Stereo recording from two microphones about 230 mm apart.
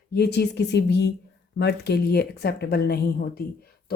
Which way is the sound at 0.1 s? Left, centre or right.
Left.